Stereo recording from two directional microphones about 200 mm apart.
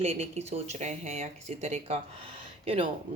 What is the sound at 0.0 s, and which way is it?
Speech, 30° right (ahead or behind).